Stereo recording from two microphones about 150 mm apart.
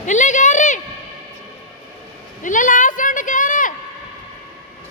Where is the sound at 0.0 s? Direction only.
55° left (ahead or behind).